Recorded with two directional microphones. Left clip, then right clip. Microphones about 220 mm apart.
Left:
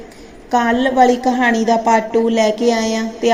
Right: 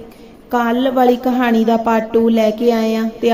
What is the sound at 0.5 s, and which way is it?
A woman's voice, 15° right (ahead or behind).